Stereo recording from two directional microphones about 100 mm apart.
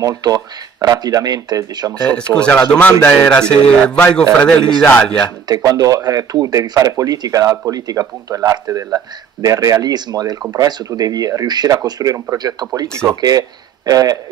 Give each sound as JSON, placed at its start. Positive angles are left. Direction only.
{"t": 0.0, "sound": "speech", "side_deg": -40}
{"t": 2.3, "sound": "speech", "side_deg": 10}
{"t": 5.5, "sound": "speech", "side_deg": -40}